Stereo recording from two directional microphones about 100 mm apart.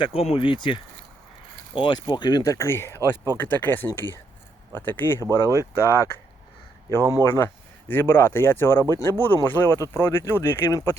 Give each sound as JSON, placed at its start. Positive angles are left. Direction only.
{"t": 0.1, "sound": "speech", "side_deg": 80}
{"t": 2.4, "sound": "speech", "side_deg": 30}
{"t": 7.0, "sound": "speech", "side_deg": -35}
{"t": 7.3, "sound": "speech", "side_deg": 25}